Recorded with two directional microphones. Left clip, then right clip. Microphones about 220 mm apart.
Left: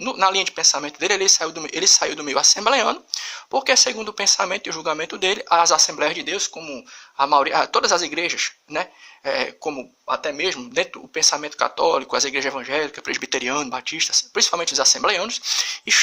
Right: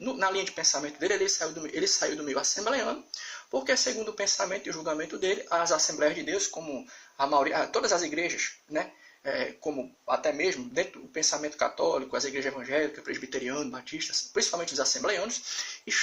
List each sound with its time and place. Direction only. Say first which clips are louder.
0.0 s speech: left 10 dB; 40° left (ahead or behind)